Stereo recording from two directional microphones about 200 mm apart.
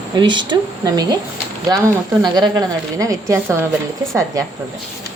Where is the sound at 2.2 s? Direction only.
20° right (ahead or behind).